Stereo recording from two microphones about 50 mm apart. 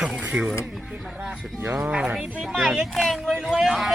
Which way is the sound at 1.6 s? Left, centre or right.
Right.